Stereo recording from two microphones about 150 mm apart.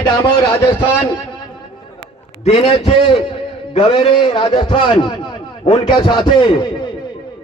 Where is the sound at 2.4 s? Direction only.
45° left (ahead or behind).